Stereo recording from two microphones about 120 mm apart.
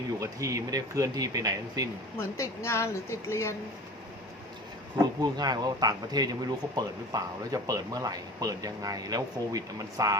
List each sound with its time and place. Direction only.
0.2 s speech: 25° right (ahead or behind)
2.1 s a woman's voice: 25° left (ahead or behind)
4.9 s speech: 35° right (ahead or behind)